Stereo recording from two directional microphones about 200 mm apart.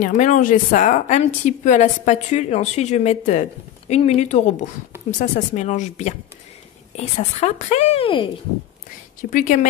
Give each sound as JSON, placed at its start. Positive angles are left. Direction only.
{"t": 0.0, "sound": "a woman's voice", "side_deg": 35}
{"t": 9.2, "sound": "a woman's voice", "side_deg": 40}